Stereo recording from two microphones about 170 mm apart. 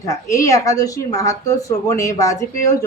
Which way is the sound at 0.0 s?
20° left (ahead or behind).